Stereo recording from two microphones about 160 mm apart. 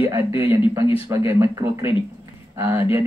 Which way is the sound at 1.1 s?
15° right (ahead or behind).